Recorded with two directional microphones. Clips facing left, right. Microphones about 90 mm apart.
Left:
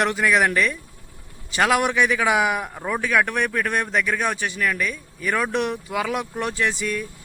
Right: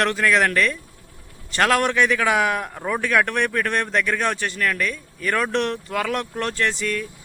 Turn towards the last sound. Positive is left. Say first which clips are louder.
# right 1 dB
turn(degrees=10)  # may be behind; listen again after turning